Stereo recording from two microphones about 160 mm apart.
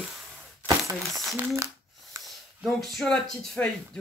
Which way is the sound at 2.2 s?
Centre (ahead or behind).